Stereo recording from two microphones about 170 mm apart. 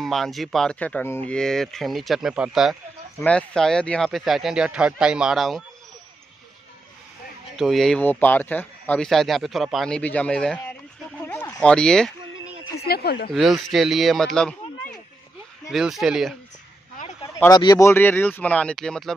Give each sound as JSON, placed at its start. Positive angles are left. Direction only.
{"t": 0.0, "sound": "speech", "side_deg": 0}
{"t": 7.5, "sound": "speech", "side_deg": 0}
{"t": 11.2, "sound": "a sound", "side_deg": 10}
{"t": 12.8, "sound": "speech", "side_deg": 65}
{"t": 13.3, "sound": "speech", "side_deg": 0}
{"t": 15.7, "sound": "speech", "side_deg": 0}
{"t": 17.0, "sound": "a sound", "side_deg": 50}
{"t": 17.5, "sound": "speech", "side_deg": 20}